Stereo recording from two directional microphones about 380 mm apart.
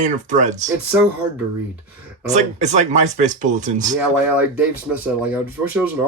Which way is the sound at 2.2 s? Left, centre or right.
Centre.